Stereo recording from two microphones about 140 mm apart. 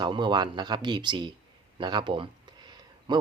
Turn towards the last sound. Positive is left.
turn(degrees=-35)  # may be behind; listen again after turning